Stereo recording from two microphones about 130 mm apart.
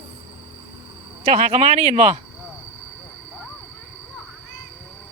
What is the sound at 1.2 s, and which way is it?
Speech, 60° right (ahead or behind).